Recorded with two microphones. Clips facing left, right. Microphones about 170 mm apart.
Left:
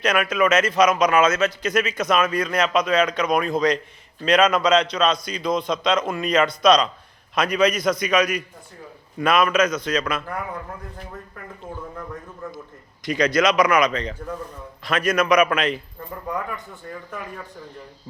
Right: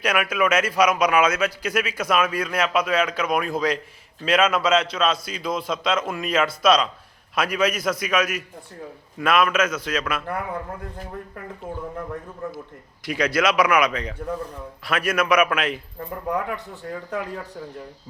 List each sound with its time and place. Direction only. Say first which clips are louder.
0.0 s a man's voice: left 2 dB; 10° right (ahead or behind)
13.0 s a man's voice: left 3 dB; 5° right (ahead or behind)